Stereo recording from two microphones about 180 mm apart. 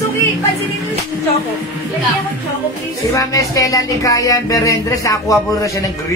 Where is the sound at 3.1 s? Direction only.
20° left (ahead or behind).